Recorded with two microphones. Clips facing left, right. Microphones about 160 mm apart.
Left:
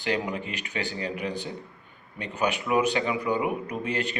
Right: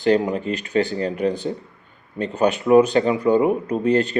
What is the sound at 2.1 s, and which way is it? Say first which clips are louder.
Speech: right 8 dB; 35° right (ahead or behind).